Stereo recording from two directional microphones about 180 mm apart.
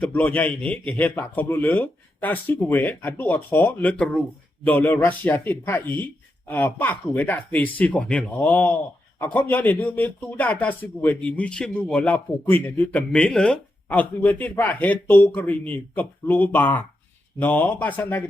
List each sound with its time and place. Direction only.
0.0 s speech: 10° left (ahead or behind)